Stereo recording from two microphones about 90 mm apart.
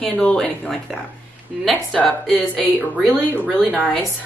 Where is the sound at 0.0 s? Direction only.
10° left (ahead or behind).